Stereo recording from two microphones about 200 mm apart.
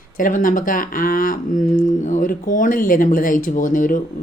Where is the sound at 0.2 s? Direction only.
40° left (ahead or behind).